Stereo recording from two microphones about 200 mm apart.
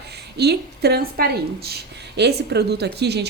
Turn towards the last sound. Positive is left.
turn(degrees=-55)  # may be behind; listen again after turning